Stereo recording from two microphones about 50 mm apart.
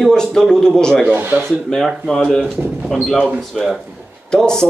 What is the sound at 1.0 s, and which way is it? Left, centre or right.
Speech, right.